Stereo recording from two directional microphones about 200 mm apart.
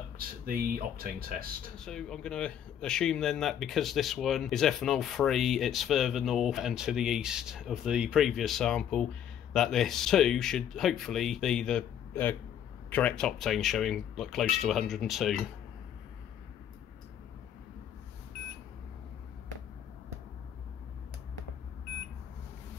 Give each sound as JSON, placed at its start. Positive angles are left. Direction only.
{"t": 0.2, "sound": "speech", "side_deg": -45}
{"t": 1.8, "sound": "speech", "side_deg": 5}